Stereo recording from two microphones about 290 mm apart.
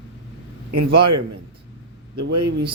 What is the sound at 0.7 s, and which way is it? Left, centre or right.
Speech, right.